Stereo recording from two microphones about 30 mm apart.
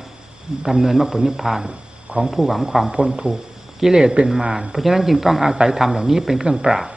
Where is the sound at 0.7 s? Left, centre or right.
Centre.